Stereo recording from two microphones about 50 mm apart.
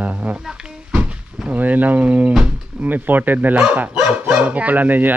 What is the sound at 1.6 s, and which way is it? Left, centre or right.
Speech, right.